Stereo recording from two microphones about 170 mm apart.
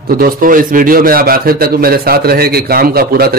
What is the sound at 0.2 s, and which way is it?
A man's voice, 55° right (ahead or behind).